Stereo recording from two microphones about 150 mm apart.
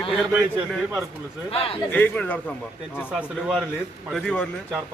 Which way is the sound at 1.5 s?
40° left (ahead or behind).